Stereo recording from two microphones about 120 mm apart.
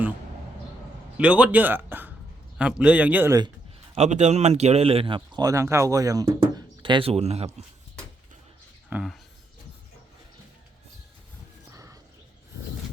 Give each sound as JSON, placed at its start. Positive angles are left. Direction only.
{"t": 1.1, "sound": "a man's voice", "side_deg": -10}
{"t": 3.9, "sound": "speech", "side_deg": -65}
{"t": 7.1, "sound": "speech", "side_deg": -60}
{"t": 8.9, "sound": "a man's voice", "side_deg": -15}
{"t": 11.7, "sound": "a sound", "side_deg": -25}